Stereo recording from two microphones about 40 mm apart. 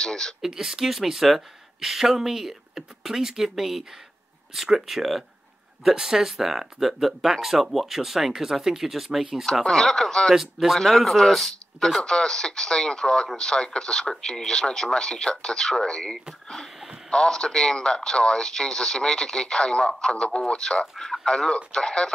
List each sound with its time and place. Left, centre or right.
0.0 s speech: centre
0.5 s speech: centre
9.5 s speech: centre
10.3 s speech: centre
10.8 s speech: centre
12.0 s speech: centre
21.0 s speech: centre
21.3 s speech: centre